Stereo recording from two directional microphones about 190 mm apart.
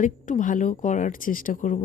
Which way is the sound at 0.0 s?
45° left (ahead or behind).